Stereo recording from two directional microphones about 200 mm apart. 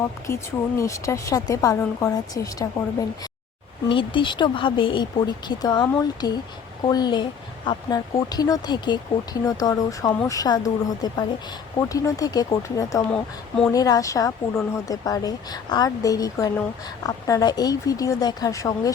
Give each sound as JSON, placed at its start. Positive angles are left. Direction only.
{"t": 0.8, "sound": "speech", "side_deg": 15}
{"t": 13.1, "sound": "speech", "side_deg": 5}
{"t": 13.7, "sound": "speech", "side_deg": 20}